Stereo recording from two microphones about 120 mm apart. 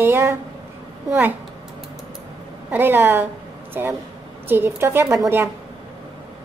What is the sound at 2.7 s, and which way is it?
A woman's voice, 15° right (ahead or behind).